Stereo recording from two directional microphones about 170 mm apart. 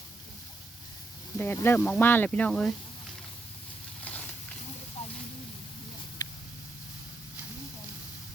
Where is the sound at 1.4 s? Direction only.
15° left (ahead or behind).